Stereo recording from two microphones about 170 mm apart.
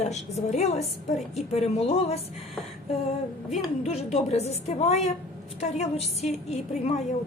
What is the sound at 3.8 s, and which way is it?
A woman's voice, 40° left (ahead or behind).